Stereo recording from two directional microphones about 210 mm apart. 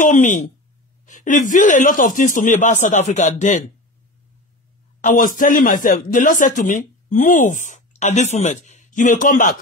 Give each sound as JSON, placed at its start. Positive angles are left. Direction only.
{"t": 0.0, "sound": "a man's voice", "side_deg": 35}
{"t": 5.0, "sound": "a man's voice", "side_deg": 40}